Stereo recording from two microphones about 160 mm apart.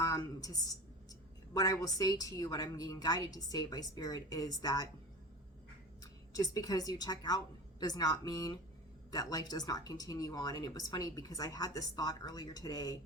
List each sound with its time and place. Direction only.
0.0 s a woman's voice: 20° left (ahead or behind)
6.0 s a woman's voice: 20° left (ahead or behind)